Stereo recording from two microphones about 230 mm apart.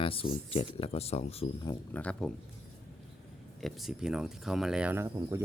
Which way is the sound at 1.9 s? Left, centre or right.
Centre.